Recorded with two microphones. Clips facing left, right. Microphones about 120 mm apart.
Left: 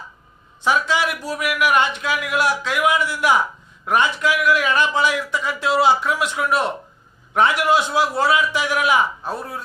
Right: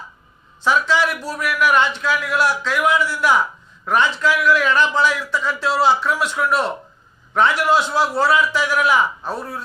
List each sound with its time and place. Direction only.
0.6 s a man's voice: 15° left (ahead or behind)